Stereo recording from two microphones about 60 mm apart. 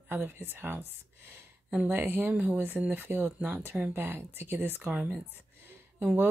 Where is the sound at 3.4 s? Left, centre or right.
Right.